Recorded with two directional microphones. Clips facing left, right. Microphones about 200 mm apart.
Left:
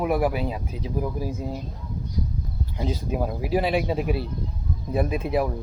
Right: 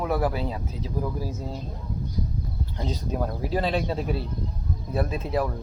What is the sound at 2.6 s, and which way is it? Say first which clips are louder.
Speech: left 3 dB; 10° left (ahead or behind).